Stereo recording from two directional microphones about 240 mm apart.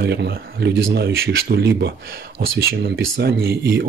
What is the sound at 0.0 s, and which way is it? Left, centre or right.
Speech, right.